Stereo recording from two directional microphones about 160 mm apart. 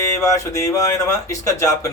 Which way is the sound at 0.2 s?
20° left (ahead or behind).